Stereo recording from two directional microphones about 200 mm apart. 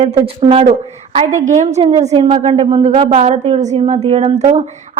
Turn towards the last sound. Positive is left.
turn(degrees=-35)  # may be behind; listen again after turning